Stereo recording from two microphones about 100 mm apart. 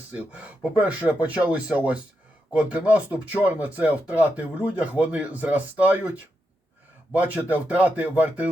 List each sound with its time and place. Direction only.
0.1 s speech: 15° right (ahead or behind)
7.1 s speech: 15° right (ahead or behind)